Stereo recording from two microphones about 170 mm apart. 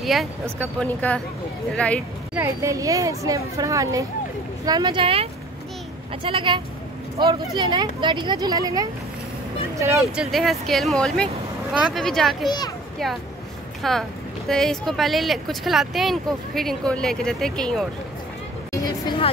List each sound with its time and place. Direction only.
0.0 s speech: centre (ahead or behind)
2.3 s speech: 15° right (ahead or behind)
10.1 s speech: centre (ahead or behind)
12.4 s a child's voice: 25° left (ahead or behind)
13.0 s speech: centre (ahead or behind)
18.7 s a sound: 25° left (ahead or behind)